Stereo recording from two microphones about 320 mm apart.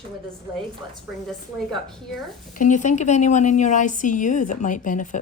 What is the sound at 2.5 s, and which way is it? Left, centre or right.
A woman's voice, left.